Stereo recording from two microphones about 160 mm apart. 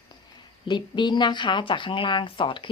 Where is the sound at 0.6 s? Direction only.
30° left (ahead or behind).